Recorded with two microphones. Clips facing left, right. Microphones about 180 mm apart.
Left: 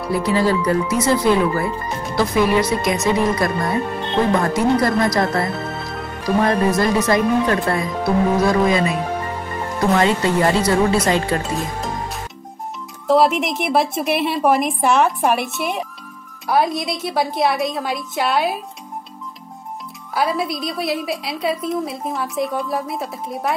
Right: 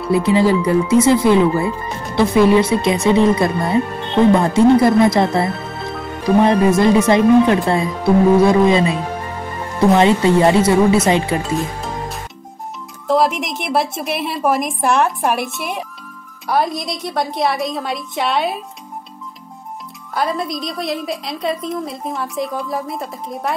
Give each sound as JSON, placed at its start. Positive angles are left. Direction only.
{"t": 0.1, "sound": "speech", "side_deg": -25}
{"t": 9.9, "sound": "speech", "side_deg": -20}
{"t": 13.0, "sound": "a woman's voice", "side_deg": 0}
{"t": 20.2, "sound": "a woman's voice", "side_deg": 5}